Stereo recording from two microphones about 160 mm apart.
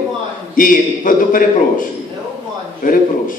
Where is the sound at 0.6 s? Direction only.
60° left (ahead or behind).